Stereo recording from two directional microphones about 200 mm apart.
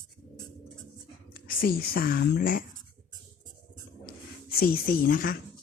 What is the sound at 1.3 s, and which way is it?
Speech, 45° left (ahead or behind).